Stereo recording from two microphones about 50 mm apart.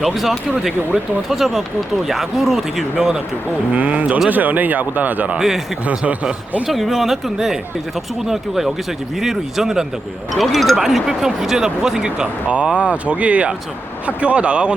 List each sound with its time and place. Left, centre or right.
0.0 s speech: centre
3.7 s speech: right
6.7 s speech: centre; by 14.8 s right